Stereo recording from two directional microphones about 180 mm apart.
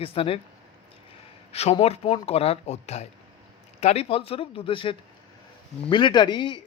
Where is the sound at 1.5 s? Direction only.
35° left (ahead or behind).